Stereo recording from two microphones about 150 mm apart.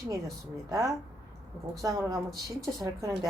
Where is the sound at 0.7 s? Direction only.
20° right (ahead or behind).